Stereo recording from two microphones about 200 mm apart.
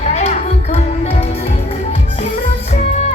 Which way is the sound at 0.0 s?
35° left (ahead or behind).